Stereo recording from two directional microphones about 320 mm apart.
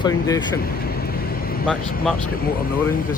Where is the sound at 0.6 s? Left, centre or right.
Left.